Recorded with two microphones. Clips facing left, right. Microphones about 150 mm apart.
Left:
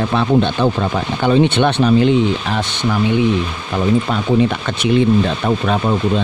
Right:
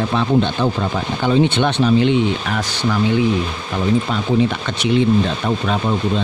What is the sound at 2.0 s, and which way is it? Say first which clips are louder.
Speech: left 2 dB; 35° left (ahead or behind).